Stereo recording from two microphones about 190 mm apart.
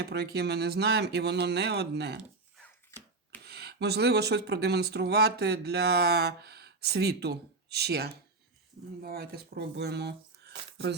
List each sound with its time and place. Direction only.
0.0 s speech: 60° right (ahead or behind)
2.6 s chopping: 10° left (ahead or behind)
3.4 s speech: 60° right (ahead or behind)